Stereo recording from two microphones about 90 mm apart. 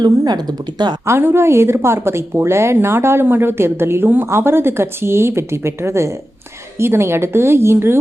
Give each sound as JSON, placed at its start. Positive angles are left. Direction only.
{"t": 0.0, "sound": "speech", "side_deg": -50}
{"t": 1.0, "sound": "a woman's voice", "side_deg": -25}